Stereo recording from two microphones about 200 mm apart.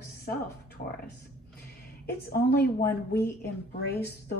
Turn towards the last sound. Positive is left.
turn(degrees=55)  # may be behind; listen again after turning